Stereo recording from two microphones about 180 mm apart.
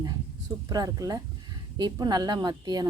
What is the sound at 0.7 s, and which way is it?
Speech, 20° right (ahead or behind).